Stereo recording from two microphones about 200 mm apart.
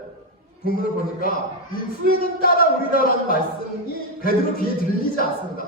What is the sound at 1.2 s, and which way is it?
Speech, 45° left (ahead or behind).